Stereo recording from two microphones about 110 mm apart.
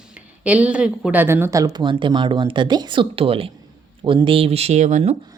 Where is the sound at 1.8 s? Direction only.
45° right (ahead or behind); by 5.1 s 90° right.